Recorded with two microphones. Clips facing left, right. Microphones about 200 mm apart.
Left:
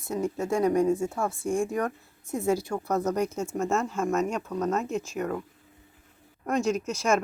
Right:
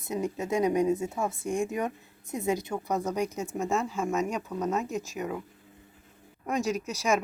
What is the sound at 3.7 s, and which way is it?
Speech, centre (ahead or behind).